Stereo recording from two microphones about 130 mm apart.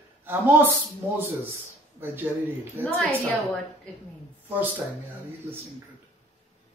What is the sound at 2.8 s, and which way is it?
Speech, 15° right (ahead or behind).